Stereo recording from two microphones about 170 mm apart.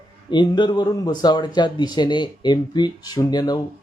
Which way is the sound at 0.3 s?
25° left (ahead or behind).